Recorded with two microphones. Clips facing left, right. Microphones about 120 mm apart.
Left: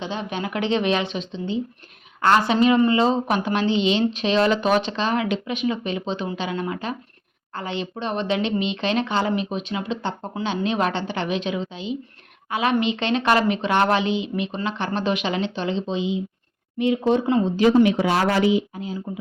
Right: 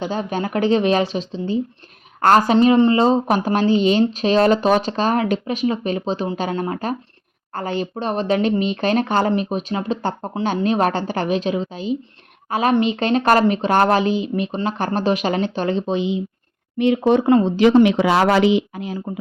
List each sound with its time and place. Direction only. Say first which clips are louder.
0.0 s a woman's voice: right 5 dB; 40° right (ahead or behind)